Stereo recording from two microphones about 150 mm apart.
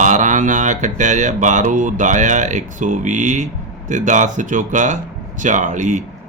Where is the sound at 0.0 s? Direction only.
55° right (ahead or behind).